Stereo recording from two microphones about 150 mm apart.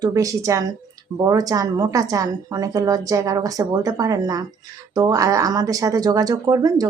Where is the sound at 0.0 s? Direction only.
20° right (ahead or behind).